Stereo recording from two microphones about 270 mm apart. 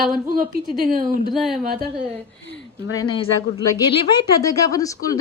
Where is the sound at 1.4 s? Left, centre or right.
Centre.